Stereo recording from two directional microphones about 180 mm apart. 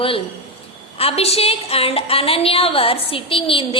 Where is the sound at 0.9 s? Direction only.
35° left (ahead or behind).